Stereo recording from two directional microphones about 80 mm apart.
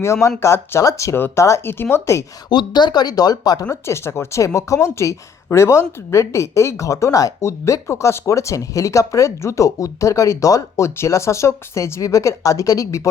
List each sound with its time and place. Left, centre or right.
0.0 s speech: left
2.5 s speech: left
3.7 s speech: left